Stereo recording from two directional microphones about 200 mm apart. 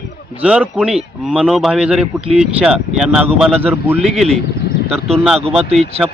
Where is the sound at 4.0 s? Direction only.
Centre (ahead or behind).